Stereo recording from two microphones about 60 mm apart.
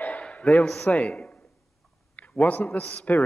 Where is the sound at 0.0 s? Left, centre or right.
Left.